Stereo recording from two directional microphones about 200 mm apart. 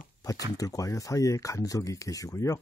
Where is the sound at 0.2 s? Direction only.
20° left (ahead or behind).